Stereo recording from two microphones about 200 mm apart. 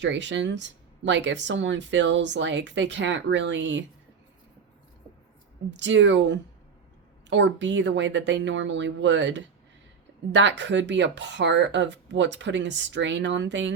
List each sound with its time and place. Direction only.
0.0 s speech: 65° right (ahead or behind)
5.7 s speech: 65° right (ahead or behind)